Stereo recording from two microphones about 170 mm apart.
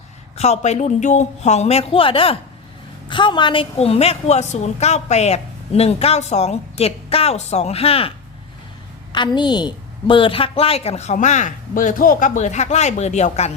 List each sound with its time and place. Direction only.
0.3 s a woman's voice: 40° left (ahead or behind)
9.1 s a woman's voice: 25° left (ahead or behind)